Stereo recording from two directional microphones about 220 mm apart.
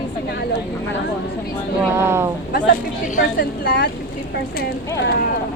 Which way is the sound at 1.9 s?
10° right (ahead or behind).